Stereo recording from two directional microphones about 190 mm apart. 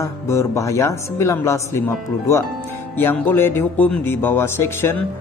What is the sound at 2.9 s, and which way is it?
Speech, 10° left (ahead or behind).